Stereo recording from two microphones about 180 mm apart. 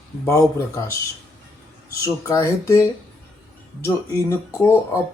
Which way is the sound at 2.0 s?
15° left (ahead or behind).